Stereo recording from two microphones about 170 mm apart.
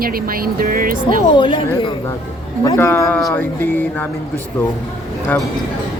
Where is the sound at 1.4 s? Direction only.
30° left (ahead or behind).